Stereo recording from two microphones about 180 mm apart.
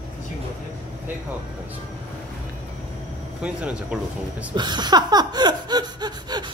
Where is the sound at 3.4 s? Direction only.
5° right (ahead or behind).